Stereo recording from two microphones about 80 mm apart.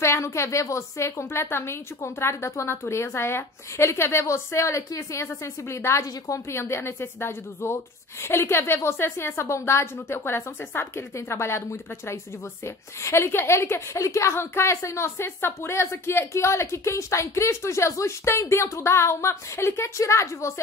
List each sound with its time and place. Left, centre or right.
0.0 s a woman's voice: left